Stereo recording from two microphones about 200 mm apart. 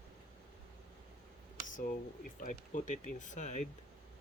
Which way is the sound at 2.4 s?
40° left (ahead or behind).